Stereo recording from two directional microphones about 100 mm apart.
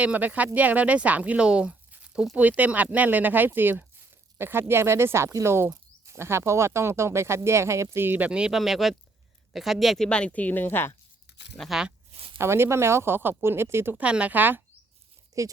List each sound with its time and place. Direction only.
0.0 s speech: 15° right (ahead or behind)
8.3 s speech: 10° right (ahead or behind); by 10.9 s 20° left (ahead or behind)
11.5 s speech: 5° left (ahead or behind)
12.1 s a sound: 70° right (ahead or behind)
12.4 s speech: 25° right (ahead or behind)
14.0 s speech: 10° right (ahead or behind)
15.3 s speech: 30° right (ahead or behind)